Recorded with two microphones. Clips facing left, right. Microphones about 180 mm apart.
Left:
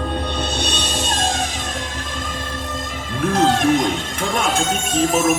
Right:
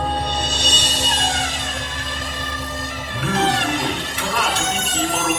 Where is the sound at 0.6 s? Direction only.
50° left (ahead or behind).